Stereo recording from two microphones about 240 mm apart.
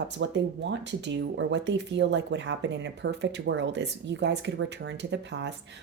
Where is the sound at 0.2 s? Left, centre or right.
Right.